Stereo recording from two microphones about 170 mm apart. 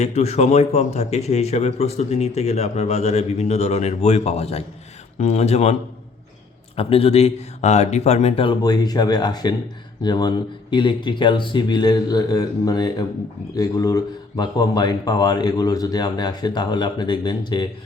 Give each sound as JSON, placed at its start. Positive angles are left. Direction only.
{"t": 0.0, "sound": "speech", "side_deg": 40}
{"t": 6.7, "sound": "speech", "side_deg": 35}